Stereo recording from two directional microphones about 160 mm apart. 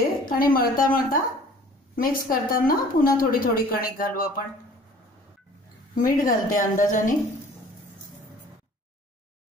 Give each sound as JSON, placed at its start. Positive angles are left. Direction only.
{"t": 0.3, "sound": "a woman's voice", "side_deg": 65}
{"t": 5.9, "sound": "a woman's voice", "side_deg": 55}